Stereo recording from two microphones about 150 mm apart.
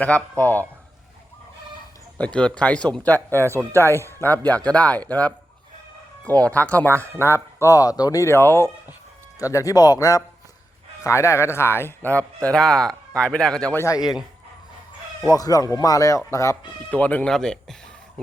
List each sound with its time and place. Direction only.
0.0 s speech: 10° left (ahead or behind)
2.1 s a man's voice: 10° left (ahead or behind)
13.7 s speech: 20° left (ahead or behind)
15.4 s speech: 25° left (ahead or behind); by 17.7 s 5° left (ahead or behind)